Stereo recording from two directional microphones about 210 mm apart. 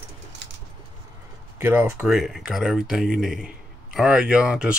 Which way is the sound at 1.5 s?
10° right (ahead or behind).